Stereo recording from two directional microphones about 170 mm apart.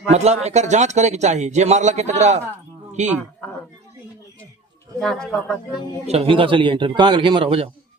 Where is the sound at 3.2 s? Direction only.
10° left (ahead or behind).